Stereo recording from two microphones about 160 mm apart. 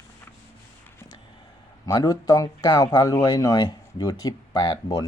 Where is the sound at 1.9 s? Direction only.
25° left (ahead or behind).